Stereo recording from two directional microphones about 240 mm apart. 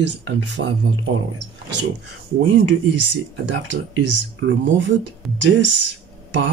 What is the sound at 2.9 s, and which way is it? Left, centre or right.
Speech, right.